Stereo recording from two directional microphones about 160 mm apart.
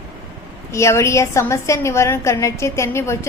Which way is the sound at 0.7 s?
15° left (ahead or behind).